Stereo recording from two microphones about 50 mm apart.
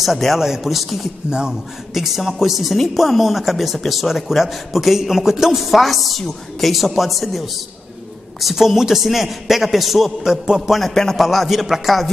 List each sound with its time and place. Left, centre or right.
0.0 s speech: centre
1.2 s speech: centre
2.0 s speech: centre
10.7 s speech: centre